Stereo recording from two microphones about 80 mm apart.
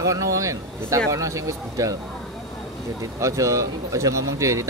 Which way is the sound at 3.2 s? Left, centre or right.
Right.